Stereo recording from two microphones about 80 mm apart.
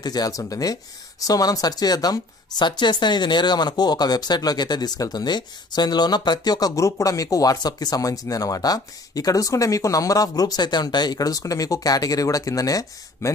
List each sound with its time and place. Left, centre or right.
0.0 s a woman's voice: left